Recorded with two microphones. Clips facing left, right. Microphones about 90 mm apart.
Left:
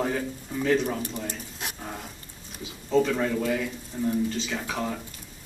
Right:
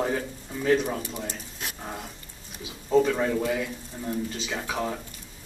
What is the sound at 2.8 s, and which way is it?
Speech, 10° right (ahead or behind).